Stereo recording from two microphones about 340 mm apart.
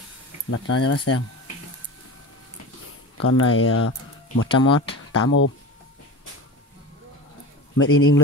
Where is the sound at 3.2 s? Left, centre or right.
Left.